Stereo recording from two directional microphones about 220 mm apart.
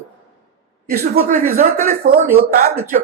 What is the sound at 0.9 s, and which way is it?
Speech, 40° right (ahead or behind).